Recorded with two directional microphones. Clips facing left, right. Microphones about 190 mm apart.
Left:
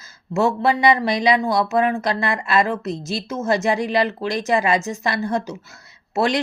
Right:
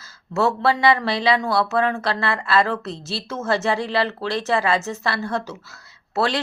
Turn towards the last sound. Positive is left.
turn(degrees=15)  # may be behind; listen again after turning